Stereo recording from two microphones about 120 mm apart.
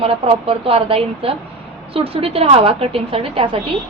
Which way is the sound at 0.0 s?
50° right (ahead or behind).